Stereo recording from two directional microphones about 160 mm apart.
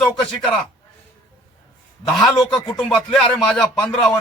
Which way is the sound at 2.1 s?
Centre (ahead or behind).